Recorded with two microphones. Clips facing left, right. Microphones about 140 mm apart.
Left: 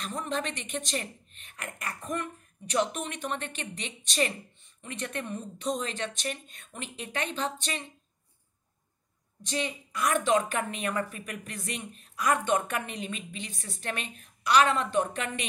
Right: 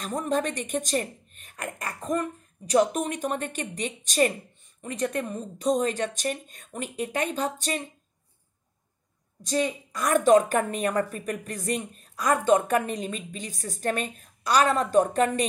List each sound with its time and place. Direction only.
0.0 s a woman's voice: 45° right (ahead or behind)
9.4 s a woman's voice: 40° right (ahead or behind)